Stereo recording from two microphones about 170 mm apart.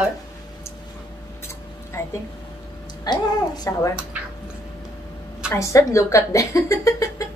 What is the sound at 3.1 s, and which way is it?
Speech, 25° left (ahead or behind).